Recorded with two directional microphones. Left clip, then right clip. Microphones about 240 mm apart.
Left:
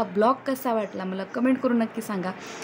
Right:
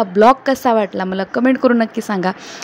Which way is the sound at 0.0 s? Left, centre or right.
Right.